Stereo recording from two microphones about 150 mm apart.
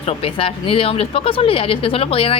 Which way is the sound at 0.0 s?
40° left (ahead or behind).